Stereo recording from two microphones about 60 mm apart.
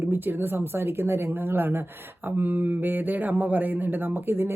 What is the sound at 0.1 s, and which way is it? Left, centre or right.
Speech, right.